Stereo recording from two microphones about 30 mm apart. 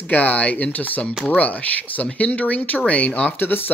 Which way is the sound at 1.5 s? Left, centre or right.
Left.